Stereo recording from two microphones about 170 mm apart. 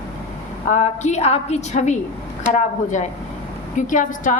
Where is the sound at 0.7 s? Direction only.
45° left (ahead or behind).